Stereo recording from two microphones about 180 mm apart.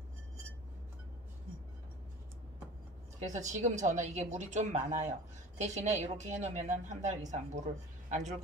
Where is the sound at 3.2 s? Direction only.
40° right (ahead or behind).